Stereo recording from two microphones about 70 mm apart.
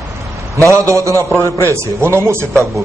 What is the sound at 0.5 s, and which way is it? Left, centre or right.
A man's voice, right.